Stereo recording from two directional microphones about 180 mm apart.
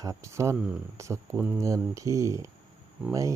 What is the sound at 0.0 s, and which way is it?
Speech, 15° right (ahead or behind).